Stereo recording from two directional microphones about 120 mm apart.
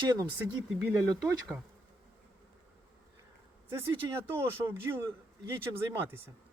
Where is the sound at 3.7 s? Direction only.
20° right (ahead or behind).